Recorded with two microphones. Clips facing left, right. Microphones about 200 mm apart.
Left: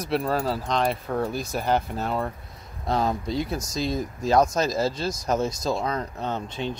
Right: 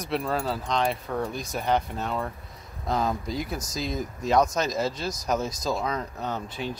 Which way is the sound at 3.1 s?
25° left (ahead or behind).